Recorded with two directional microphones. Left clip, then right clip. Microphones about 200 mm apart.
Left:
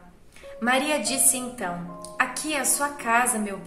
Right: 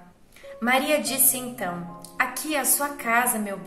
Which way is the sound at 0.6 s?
15° left (ahead or behind).